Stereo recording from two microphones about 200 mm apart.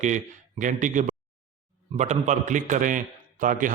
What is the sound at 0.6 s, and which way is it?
A man's voice, 40° right (ahead or behind).